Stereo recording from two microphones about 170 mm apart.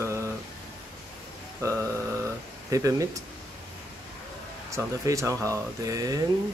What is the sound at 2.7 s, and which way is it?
Speech, 20° right (ahead or behind).